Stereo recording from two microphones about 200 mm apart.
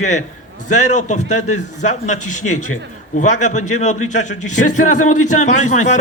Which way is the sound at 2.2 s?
90° left.